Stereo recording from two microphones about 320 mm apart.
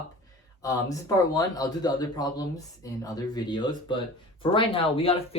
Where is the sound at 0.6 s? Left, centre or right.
Centre.